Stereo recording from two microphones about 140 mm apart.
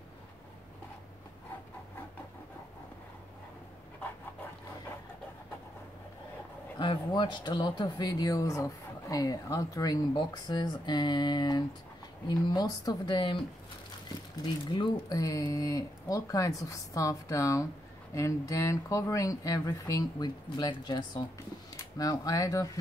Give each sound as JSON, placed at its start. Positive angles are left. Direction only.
{"t": 6.8, "sound": "speech", "side_deg": 35}
{"t": 14.4, "sound": "speech", "side_deg": 35}